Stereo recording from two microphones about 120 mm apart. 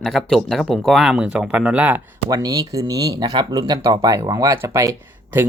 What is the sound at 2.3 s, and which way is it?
Speech, 30° right (ahead or behind).